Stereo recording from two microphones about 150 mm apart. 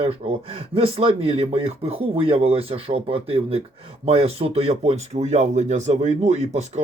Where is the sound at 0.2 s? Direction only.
40° right (ahead or behind).